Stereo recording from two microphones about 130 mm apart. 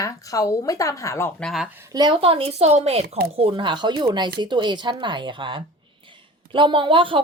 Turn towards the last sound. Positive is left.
turn(degrees=-40)  # may be behind; listen again after turning